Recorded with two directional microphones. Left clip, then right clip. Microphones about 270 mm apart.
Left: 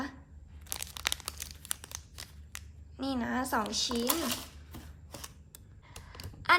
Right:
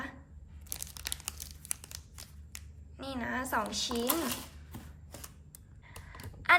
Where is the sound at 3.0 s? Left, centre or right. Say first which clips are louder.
Left 3 dB; centre.